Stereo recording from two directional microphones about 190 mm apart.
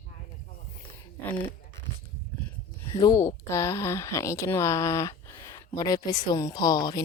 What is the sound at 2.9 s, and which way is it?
A woman's voice, 20° left (ahead or behind).